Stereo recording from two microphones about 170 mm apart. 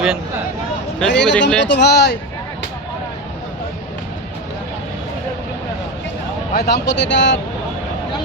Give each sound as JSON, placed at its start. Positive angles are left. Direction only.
{"t": 0.9, "sound": "speech", "side_deg": 5}
{"t": 1.7, "sound": "speech", "side_deg": 80}
{"t": 6.5, "sound": "speech", "side_deg": 70}